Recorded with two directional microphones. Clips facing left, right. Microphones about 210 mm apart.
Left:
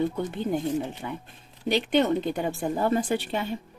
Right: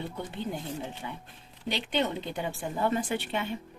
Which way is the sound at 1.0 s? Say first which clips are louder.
Left 5 dB; 45° left (ahead or behind).